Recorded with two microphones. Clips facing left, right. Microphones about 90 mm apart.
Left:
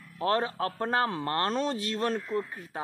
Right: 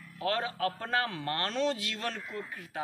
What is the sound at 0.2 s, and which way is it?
Speech, 35° left (ahead or behind).